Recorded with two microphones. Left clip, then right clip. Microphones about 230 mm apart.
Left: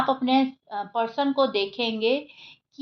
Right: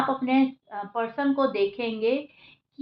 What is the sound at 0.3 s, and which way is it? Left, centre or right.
A woman's voice, left.